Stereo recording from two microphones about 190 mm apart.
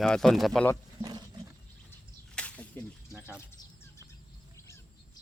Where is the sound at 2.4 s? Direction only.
5° left (ahead or behind).